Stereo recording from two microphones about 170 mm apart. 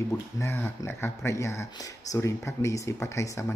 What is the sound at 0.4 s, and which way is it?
Speech, 15° left (ahead or behind).